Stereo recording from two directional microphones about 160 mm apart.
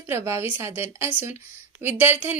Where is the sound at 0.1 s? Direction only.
15° right (ahead or behind).